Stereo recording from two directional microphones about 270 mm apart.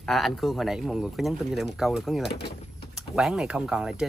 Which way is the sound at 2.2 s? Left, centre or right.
Left.